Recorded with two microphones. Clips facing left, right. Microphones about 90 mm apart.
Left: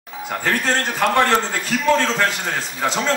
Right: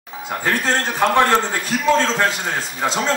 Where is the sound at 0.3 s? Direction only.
15° right (ahead or behind).